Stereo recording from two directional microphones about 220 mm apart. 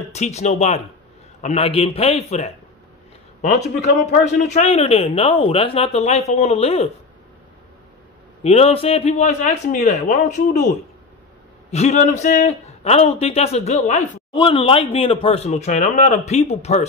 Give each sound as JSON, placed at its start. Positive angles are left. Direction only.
{"t": 0.1, "sound": "a man's voice", "side_deg": 30}
{"t": 4.6, "sound": "a man's voice", "side_deg": 30}
{"t": 8.4, "sound": "a man's voice", "side_deg": 30}
{"t": 11.7, "sound": "a man's voice", "side_deg": 30}